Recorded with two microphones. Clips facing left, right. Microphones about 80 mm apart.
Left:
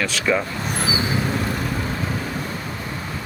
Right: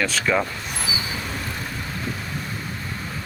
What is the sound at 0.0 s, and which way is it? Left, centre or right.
Speech, centre.